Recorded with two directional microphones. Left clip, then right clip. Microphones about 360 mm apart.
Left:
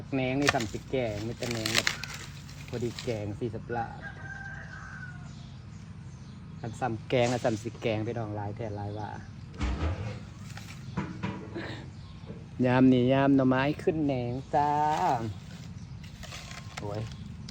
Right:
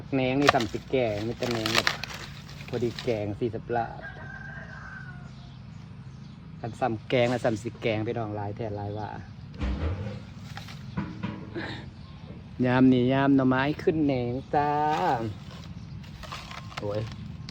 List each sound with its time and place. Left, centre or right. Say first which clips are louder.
0.1 s speech: right 5 dB; centre
6.6 s speech: right 4 dB; centre
11.5 s a sound: right 3 dB; centre
12.6 s speech: right 1 dB; centre
16.2 s mechanisms: right 4 dB; centre